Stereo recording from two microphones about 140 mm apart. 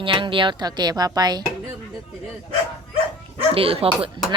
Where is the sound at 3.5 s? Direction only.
40° right (ahead or behind).